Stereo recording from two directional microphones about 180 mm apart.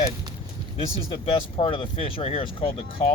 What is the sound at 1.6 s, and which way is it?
Speech, 30° left (ahead or behind).